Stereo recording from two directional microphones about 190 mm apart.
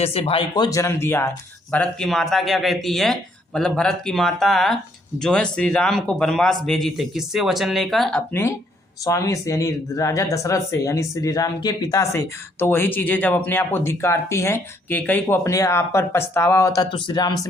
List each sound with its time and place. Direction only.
0.0 s speech: 30° left (ahead or behind)